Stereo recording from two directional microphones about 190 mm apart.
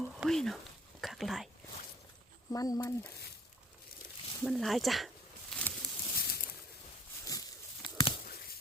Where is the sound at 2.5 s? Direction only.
15° left (ahead or behind).